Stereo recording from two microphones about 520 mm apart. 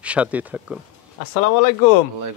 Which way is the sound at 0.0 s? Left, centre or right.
Centre.